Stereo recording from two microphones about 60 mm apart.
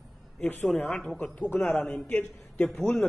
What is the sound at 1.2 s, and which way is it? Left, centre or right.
A man's voice, left.